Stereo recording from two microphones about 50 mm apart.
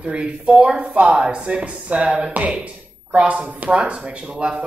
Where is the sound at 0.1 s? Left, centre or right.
Right.